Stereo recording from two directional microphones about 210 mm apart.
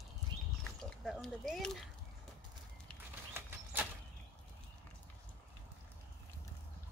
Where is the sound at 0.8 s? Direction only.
Centre (ahead or behind).